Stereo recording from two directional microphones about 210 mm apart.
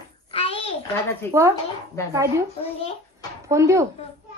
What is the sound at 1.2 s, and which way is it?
Speech, 10° left (ahead or behind).